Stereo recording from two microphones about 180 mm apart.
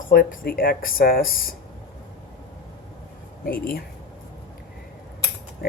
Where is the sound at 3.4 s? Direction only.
55° left (ahead or behind).